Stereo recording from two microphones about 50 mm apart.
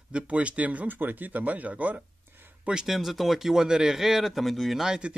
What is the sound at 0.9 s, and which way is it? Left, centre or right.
Speech, right.